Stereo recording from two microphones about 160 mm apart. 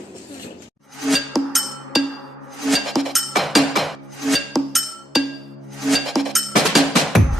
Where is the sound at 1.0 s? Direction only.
Centre (ahead or behind).